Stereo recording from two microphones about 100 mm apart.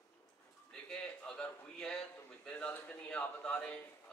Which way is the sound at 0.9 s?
10° left (ahead or behind).